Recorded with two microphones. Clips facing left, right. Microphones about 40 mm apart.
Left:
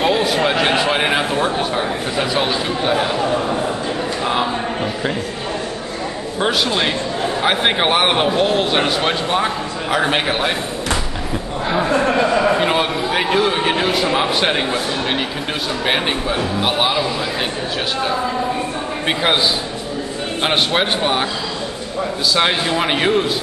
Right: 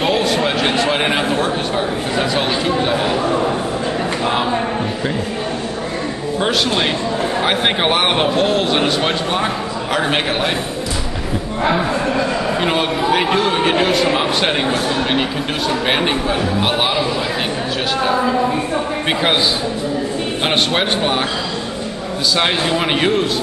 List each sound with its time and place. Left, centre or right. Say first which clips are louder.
0.0 s a sound: even; centre
0.6 s a man's voice: even; centre
6.4 s a man's voice: even; centre
11.9 s a sound: left 3 dB; left
12.5 s a man's voice: even; centre
15.9 s a man's voice: even; centre
20.4 s a man's voice: even; centre
22.3 s a man's voice: right 1 dB; centre